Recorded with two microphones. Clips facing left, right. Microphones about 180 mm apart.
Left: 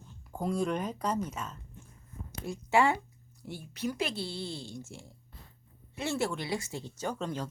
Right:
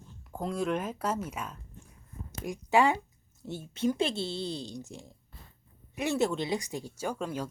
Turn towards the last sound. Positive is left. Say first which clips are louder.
# right 1 dB
turn(degrees=-10)  # may be behind; listen again after turning